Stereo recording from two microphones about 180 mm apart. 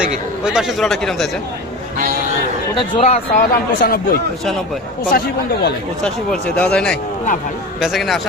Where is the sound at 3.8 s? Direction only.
55° left (ahead or behind).